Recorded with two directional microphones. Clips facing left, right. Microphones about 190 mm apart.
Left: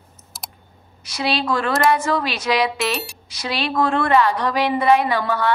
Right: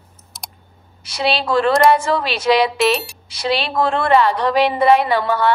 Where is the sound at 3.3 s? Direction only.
30° right (ahead or behind).